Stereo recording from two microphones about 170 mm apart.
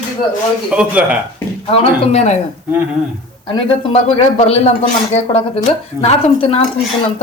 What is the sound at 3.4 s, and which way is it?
Speech, 35° left (ahead or behind).